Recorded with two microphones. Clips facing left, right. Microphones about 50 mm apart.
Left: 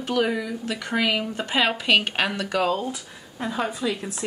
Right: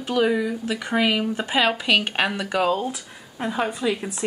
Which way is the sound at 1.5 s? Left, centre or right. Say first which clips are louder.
Even; centre.